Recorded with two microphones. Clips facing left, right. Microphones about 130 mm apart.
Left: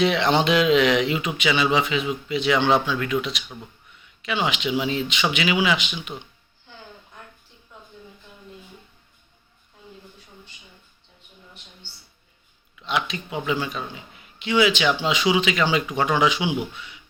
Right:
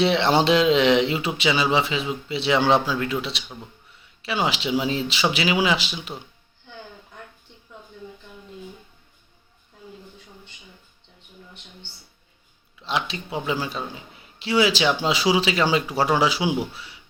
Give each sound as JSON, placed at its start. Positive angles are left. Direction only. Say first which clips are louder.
{"t": 0.0, "sound": "a man's voice", "louder": "right 1 dB", "side_deg": -30}
{"t": 4.0, "sound": "a sound", "louder": "left 1 dB", "side_deg": -35}
{"t": 4.4, "sound": "a man's voice", "louder": "right 1 dB", "side_deg": -35}
{"t": 12.8, "sound": "a man's voice", "louder": "left 1 dB", "side_deg": -30}